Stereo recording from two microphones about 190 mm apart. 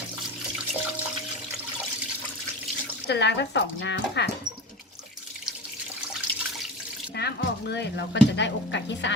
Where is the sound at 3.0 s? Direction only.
65° left (ahead or behind).